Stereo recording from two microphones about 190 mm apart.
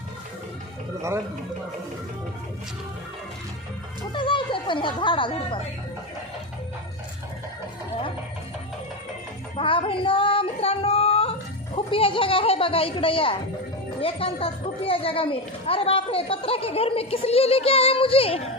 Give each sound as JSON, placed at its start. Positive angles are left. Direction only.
{"t": 4.1, "sound": "speech", "side_deg": 25}
{"t": 9.6, "sound": "female singing", "side_deg": 30}
{"t": 14.0, "sound": "a woman's voice", "side_deg": 30}